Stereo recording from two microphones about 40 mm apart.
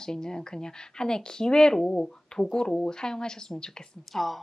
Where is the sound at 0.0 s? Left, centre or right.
Centre.